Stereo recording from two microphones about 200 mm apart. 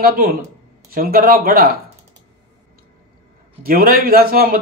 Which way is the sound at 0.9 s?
45° right (ahead or behind).